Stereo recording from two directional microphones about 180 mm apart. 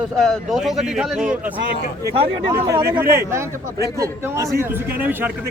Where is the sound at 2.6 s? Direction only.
15° right (ahead or behind).